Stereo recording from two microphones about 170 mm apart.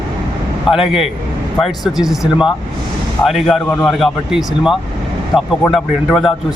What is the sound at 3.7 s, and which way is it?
Speech, 10° left (ahead or behind).